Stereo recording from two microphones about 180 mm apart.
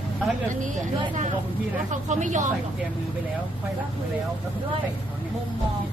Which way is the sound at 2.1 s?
45° right (ahead or behind).